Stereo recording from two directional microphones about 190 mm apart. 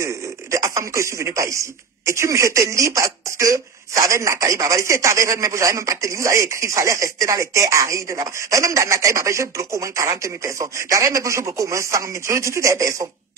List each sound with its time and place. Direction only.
0.0 s speech: 15° right (ahead or behind)